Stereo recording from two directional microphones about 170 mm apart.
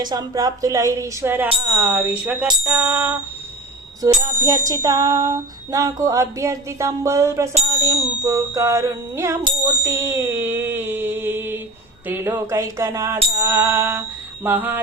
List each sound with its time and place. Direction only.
0.0 s bicycle bell: 25° right (ahead or behind)
1.8 s music: 10° right (ahead or behind)
4.2 s bicycle bell: 20° right (ahead or behind)
7.8 s music: 15° right (ahead or behind)
9.4 s a sound: 20° right (ahead or behind)
12.0 s music: 10° right (ahead or behind)